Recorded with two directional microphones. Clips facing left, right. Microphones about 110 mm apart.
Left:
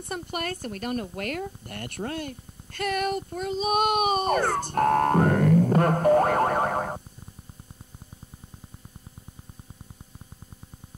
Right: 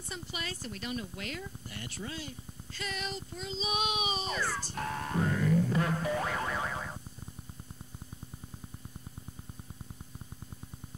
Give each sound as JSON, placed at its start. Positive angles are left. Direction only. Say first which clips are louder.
{"t": 0.0, "sound": "speech", "louder": "left 9 dB", "side_deg": 55}